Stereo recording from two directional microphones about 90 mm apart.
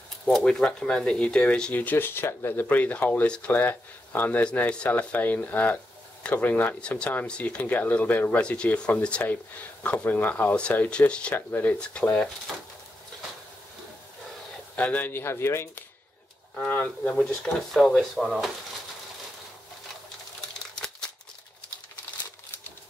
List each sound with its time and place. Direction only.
0.2 s speech: 10° left (ahead or behind)
11.3 s speech: 25° left (ahead or behind)
11.8 s speech: 10° left (ahead or behind)
14.8 s speech: 15° left (ahead or behind)
16.5 s speech: 15° left (ahead or behind)
17.2 s speech: centre (ahead or behind)